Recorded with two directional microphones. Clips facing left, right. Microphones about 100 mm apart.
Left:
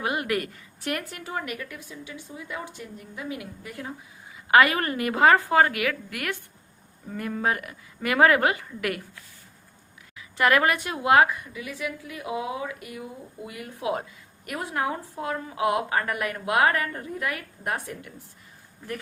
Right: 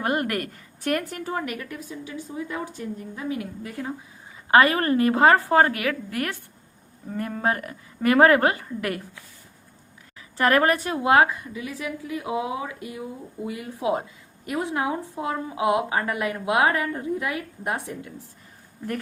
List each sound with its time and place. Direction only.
0.0 s a woman's voice: 45° right (ahead or behind)
10.2 s a woman's voice: 35° right (ahead or behind)